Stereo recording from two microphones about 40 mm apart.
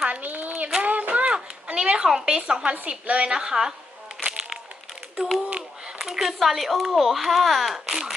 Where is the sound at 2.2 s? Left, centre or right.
Centre.